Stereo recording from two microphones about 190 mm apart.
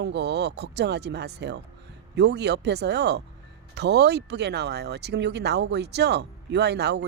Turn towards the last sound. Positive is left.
turn(degrees=-60)  # may be behind; listen again after turning